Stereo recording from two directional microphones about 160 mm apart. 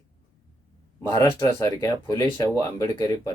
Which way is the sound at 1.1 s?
20° left (ahead or behind).